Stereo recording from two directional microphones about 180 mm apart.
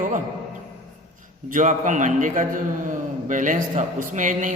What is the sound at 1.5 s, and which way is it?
A man's voice, 45° right (ahead or behind).